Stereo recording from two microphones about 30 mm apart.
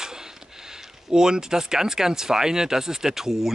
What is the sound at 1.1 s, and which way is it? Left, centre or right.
Speech, right.